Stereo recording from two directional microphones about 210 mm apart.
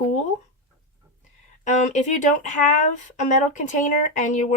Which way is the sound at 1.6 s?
35° left (ahead or behind).